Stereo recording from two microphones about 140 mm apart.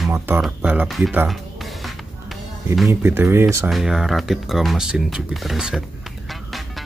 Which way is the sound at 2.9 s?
15° right (ahead or behind).